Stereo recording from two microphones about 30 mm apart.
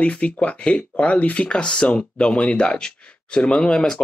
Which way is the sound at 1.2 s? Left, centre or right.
Left.